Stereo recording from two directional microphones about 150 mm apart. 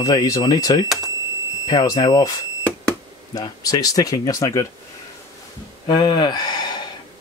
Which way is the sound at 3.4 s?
25° left (ahead or behind).